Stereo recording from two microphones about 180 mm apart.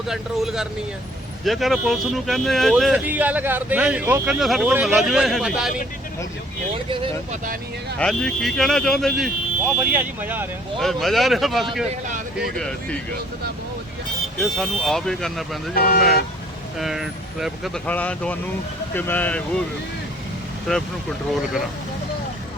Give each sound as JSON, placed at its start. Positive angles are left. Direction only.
{"t": 0.1, "sound": "speech", "side_deg": 0}
{"t": 7.9, "sound": "speech", "side_deg": 5}
{"t": 10.8, "sound": "speech", "side_deg": 0}
{"t": 14.3, "sound": "speech", "side_deg": 0}
{"t": 15.7, "sound": "speech", "side_deg": 55}
{"t": 16.7, "sound": "speech", "side_deg": 0}
{"t": 20.7, "sound": "speech", "side_deg": 0}